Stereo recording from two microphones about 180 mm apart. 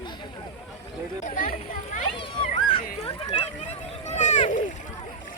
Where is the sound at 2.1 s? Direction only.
30° left (ahead or behind).